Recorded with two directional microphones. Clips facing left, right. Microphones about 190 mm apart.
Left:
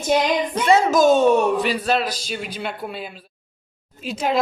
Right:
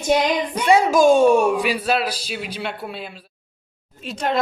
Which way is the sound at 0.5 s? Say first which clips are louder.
Right 1 dB; 10° right (ahead or behind).